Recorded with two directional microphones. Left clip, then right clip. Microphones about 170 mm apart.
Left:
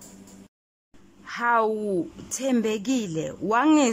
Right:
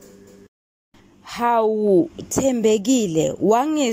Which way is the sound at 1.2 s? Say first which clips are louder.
Right 4 dB; 25° right (ahead or behind).